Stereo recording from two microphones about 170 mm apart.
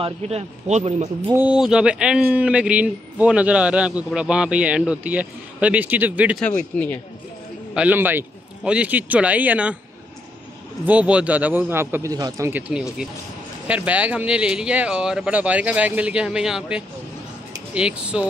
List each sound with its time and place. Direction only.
0.0 s speech: 35° right (ahead or behind)
1.3 s a man's voice: 10° right (ahead or behind)
7.7 s a man's voice: 10° right (ahead or behind)
10.9 s a man's voice: 10° right (ahead or behind)